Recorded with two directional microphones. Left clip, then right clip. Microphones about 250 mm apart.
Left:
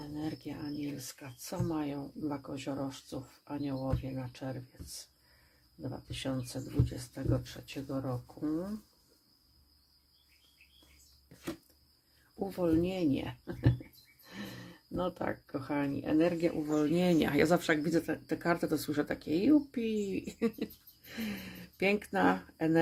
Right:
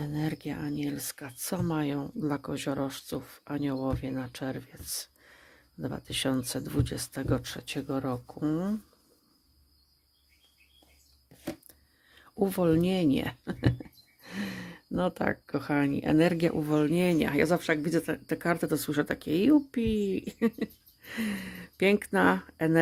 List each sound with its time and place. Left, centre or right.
0.0 s speech: right
5.8 s speech: right
12.5 s speech: right
16.8 s speech: right